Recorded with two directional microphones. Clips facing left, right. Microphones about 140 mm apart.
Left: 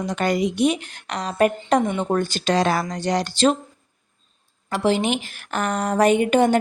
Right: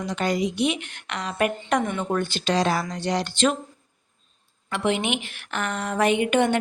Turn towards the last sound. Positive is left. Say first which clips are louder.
# left 4 dB
turn(degrees=35)  # may be behind; listen again after turning